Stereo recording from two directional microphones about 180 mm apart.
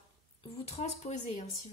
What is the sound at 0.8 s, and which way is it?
Speech, 40° left (ahead or behind).